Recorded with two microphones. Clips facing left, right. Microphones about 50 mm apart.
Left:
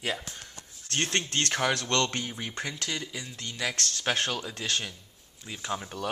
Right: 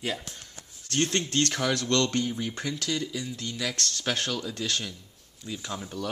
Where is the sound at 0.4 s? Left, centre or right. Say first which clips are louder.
Left 1 dB; left.